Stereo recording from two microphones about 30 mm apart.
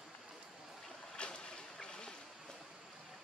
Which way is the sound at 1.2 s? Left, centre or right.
Left.